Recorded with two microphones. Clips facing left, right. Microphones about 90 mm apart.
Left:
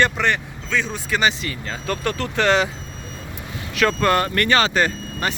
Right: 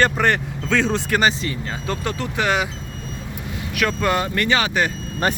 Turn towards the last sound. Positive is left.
turn(degrees=-40)  # may be behind; listen again after turning